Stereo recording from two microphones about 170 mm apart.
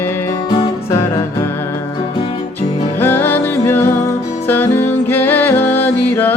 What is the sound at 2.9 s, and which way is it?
Music, 10° left (ahead or behind).